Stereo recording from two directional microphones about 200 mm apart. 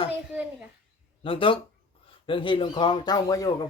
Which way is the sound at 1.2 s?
25° left (ahead or behind).